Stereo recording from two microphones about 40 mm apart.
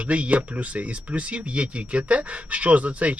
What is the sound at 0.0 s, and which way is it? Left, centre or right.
Speech, right.